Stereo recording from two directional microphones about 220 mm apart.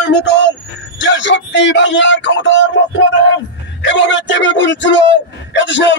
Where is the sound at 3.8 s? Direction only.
55° left (ahead or behind).